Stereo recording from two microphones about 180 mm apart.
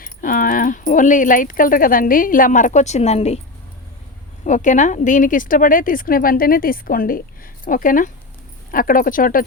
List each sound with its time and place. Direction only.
0.0 s a woman's voice: 50° left (ahead or behind)
4.4 s a woman's voice: 45° left (ahead or behind)